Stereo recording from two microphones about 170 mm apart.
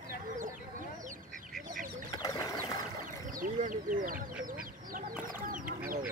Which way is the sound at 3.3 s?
50° right (ahead or behind).